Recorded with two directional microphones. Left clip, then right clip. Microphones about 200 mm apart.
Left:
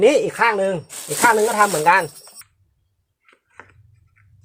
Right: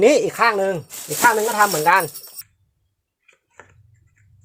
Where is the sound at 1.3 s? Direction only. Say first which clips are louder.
Left 1 dB; 10° right (ahead or behind).